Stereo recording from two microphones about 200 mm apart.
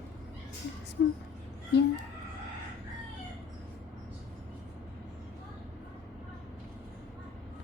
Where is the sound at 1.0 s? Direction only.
55° left (ahead or behind).